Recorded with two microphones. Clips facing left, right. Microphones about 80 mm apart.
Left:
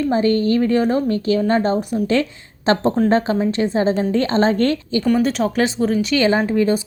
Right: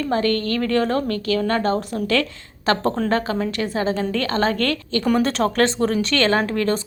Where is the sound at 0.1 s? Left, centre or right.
Centre.